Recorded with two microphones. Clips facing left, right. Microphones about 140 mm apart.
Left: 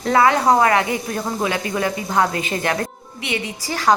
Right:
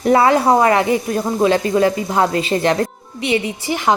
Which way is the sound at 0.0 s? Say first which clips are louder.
Right 3 dB; 25° right (ahead or behind).